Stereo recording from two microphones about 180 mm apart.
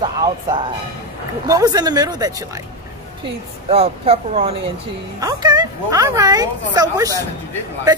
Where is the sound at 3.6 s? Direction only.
35° right (ahead or behind).